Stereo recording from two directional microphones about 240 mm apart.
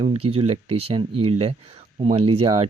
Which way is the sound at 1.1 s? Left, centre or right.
Right.